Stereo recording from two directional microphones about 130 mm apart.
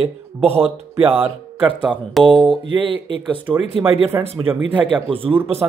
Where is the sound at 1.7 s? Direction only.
5° right (ahead or behind).